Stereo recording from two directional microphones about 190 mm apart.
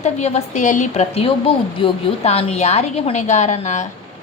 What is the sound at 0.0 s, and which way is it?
A woman's voice, 35° left (ahead or behind).